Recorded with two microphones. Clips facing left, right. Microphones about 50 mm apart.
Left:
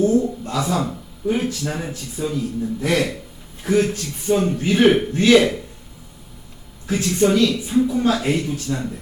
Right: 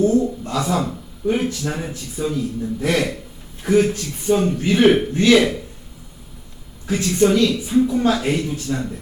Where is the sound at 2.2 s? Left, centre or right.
Right.